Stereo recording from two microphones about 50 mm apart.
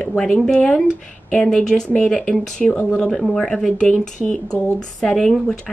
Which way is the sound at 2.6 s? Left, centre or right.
Left.